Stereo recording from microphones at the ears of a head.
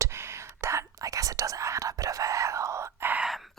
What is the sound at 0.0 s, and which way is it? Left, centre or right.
Whispering, right.